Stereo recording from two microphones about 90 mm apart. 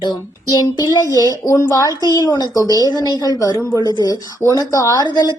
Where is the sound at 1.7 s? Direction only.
45° left (ahead or behind).